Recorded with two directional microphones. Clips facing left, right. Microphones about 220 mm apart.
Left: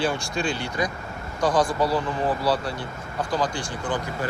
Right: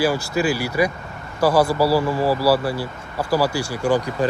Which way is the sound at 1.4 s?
65° right (ahead or behind).